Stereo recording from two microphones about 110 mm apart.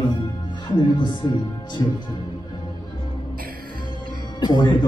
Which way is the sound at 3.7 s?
45° left (ahead or behind).